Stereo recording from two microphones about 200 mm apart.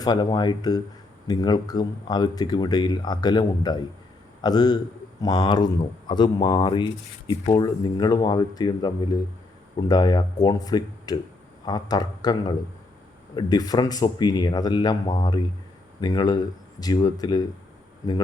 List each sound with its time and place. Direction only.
0.0 s a man's voice: 20° left (ahead or behind)